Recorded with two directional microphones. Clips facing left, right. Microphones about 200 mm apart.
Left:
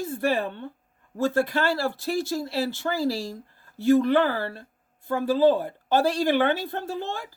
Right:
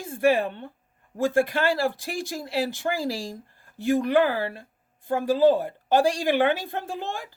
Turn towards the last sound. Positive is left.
turn(degrees=-15)  # may be behind; listen again after turning